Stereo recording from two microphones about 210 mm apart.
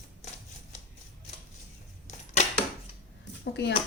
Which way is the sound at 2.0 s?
35° left (ahead or behind).